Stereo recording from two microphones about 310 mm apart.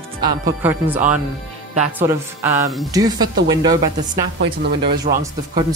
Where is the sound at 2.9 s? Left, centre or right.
Centre.